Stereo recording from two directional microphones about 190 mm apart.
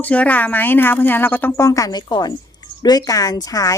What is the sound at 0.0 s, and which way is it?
Speech, 10° left (ahead or behind).